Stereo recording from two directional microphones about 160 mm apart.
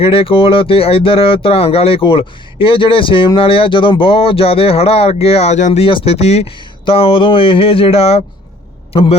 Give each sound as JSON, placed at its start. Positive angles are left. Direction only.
{"t": 0.0, "sound": "a man's voice", "side_deg": 35}